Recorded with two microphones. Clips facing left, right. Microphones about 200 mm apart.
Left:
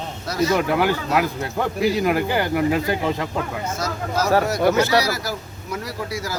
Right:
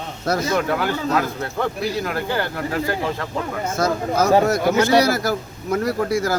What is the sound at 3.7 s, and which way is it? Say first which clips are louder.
A man's voice: right 6 dB; 55° right (ahead or behind).